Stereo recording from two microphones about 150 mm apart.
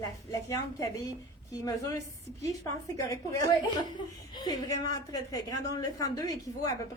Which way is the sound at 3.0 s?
20° left (ahead or behind).